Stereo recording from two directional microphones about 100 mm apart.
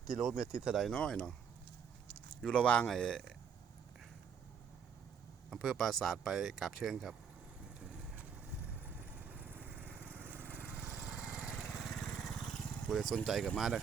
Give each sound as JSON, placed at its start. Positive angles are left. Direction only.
{"t": 0.2, "sound": "speech", "side_deg": -5}
{"t": 0.9, "sound": "a man's voice", "side_deg": 10}
{"t": 2.4, "sound": "a man's voice", "side_deg": 10}
{"t": 5.5, "sound": "speech", "side_deg": 0}
{"t": 7.9, "sound": "vehicle", "side_deg": -15}
{"t": 10.0, "sound": "lawn mower", "side_deg": -20}
{"t": 11.5, "sound": "vehicle", "side_deg": 0}
{"t": 12.9, "sound": "speech", "side_deg": 0}